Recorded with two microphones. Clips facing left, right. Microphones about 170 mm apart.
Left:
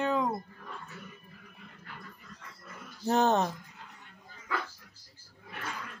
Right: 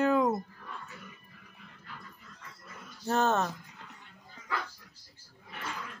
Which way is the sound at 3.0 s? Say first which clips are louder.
Left 2 dB; 15° left (ahead or behind).